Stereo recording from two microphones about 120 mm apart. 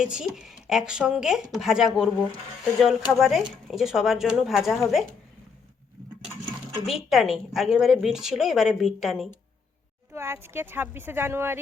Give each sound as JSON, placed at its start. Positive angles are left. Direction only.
{"t": 0.0, "sound": "a woman's voice", "side_deg": -5}
{"t": 6.8, "sound": "a woman's voice", "side_deg": 0}
{"t": 10.1, "sound": "speech", "side_deg": -20}